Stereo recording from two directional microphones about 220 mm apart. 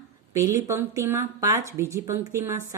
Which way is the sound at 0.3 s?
15° right (ahead or behind).